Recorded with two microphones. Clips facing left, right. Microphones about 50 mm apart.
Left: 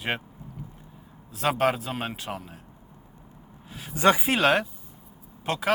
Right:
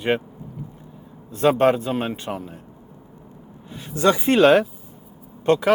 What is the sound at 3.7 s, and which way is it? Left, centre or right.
Speech, centre.